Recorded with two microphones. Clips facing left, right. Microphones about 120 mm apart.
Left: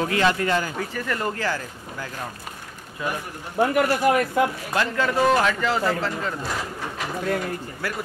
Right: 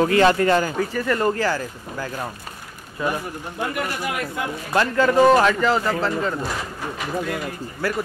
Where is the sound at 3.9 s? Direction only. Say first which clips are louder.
Left 8 dB; 40° left (ahead or behind).